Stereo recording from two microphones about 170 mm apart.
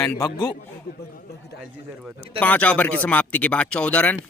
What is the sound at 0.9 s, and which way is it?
Speech, 65° left (ahead or behind).